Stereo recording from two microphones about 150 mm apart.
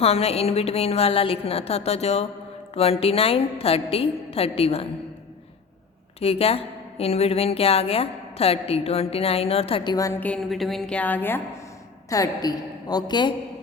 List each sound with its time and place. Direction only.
0.0 s a woman's voice: 45° left (ahead or behind)
6.1 s speech: 40° left (ahead or behind); by 10.2 s 25° left (ahead or behind)
10.2 s a woman's voice: 10° left (ahead or behind)
12.0 s a woman's voice: 20° left (ahead or behind)